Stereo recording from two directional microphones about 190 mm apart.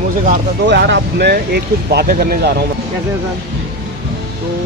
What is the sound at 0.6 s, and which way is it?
Speech, 65° right (ahead or behind).